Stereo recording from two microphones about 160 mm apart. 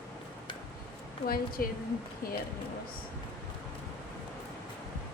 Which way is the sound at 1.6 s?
70° left (ahead or behind).